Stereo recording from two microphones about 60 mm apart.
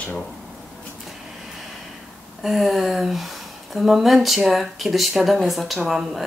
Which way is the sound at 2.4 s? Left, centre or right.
Centre.